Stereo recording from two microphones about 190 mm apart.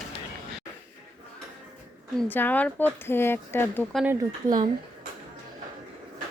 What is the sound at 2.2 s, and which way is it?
Speech, 10° left (ahead or behind).